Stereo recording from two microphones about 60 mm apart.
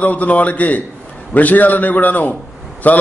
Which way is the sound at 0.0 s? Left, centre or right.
Left.